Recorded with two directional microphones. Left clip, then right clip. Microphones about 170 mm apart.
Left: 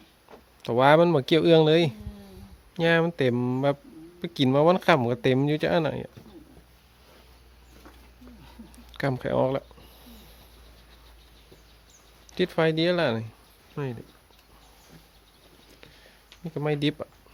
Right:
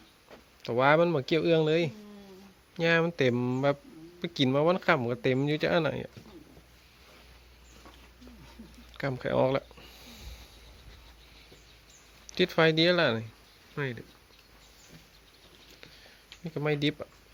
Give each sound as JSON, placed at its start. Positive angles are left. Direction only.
{"t": 0.6, "sound": "speech", "side_deg": 20}
{"t": 8.9, "sound": "a sound", "side_deg": 25}
{"t": 9.2, "sound": "speech", "side_deg": 5}
{"t": 12.3, "sound": "speech", "side_deg": 10}
{"t": 16.4, "sound": "speech", "side_deg": 10}